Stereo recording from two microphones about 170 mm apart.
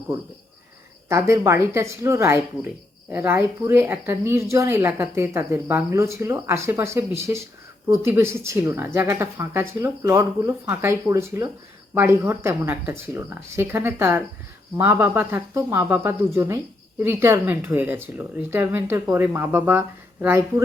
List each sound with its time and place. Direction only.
1.0 s speech: 15° right (ahead or behind)